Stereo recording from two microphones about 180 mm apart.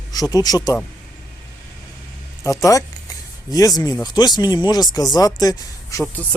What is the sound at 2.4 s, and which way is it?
Speech, 20° left (ahead or behind).